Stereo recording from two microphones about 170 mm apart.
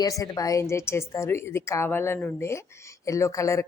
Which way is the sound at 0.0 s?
20° left (ahead or behind).